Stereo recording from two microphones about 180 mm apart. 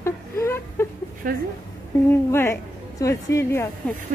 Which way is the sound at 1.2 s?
50° right (ahead or behind).